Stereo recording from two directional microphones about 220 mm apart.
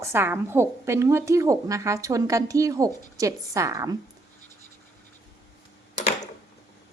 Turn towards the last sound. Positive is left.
turn(degrees=30)  # may be behind; listen again after turning